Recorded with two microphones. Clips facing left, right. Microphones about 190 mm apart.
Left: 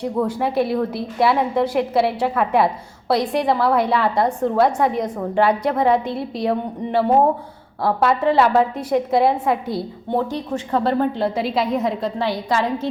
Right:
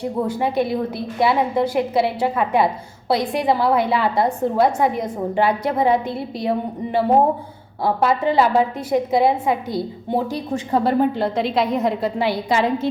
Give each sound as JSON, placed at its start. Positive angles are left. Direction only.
{"t": 0.0, "sound": "a woman's voice", "side_deg": 0}
{"t": 7.9, "sound": "a woman's voice", "side_deg": 0}
{"t": 10.2, "sound": "a woman's voice", "side_deg": -10}
{"t": 11.2, "sound": "a woman's voice", "side_deg": 5}
{"t": 12.5, "sound": "a woman's voice", "side_deg": -15}